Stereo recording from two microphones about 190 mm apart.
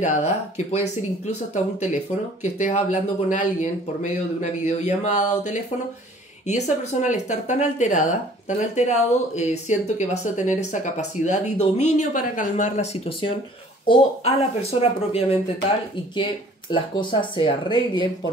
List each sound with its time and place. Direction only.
0.0 s speech: 40° left (ahead or behind)
16.7 s speech: 25° left (ahead or behind)